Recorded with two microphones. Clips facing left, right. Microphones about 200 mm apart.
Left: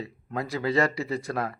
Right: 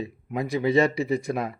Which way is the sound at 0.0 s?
15° right (ahead or behind).